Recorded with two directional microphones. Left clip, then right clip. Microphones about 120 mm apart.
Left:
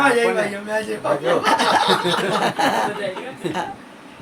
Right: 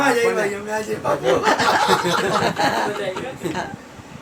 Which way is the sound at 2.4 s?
65° left (ahead or behind).